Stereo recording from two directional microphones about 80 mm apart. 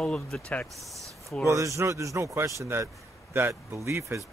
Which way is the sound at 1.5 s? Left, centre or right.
Right.